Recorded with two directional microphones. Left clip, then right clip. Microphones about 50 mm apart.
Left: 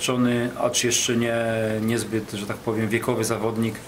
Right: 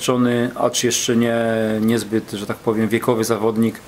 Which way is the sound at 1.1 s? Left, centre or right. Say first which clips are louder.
Right 5 dB; right.